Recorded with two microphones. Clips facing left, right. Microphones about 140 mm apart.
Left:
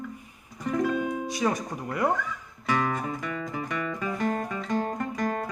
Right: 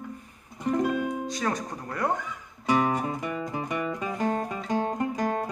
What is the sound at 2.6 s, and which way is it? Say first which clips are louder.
Music: right 3 dB; 20° right (ahead or behind).